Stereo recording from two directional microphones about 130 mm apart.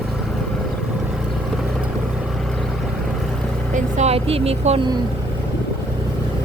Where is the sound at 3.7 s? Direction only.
60° right (ahead or behind).